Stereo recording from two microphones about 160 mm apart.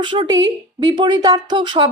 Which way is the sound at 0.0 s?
30° right (ahead or behind).